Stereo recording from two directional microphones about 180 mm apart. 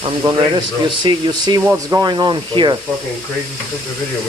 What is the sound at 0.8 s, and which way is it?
Speech, 25° right (ahead or behind).